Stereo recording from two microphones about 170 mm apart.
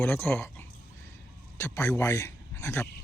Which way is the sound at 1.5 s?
15° left (ahead or behind).